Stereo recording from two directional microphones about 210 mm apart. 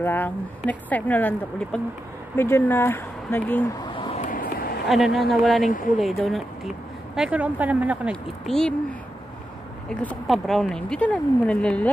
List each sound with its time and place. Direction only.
0.0 s speech: 10° left (ahead or behind)
3.9 s a sound: 25° left (ahead or behind)
4.2 s vehicle: 40° left (ahead or behind)
4.8 s speech: centre (ahead or behind)
5.6 s speech: 40° left (ahead or behind)
5.9 s speech: centre (ahead or behind)
9.8 s speech: centre (ahead or behind)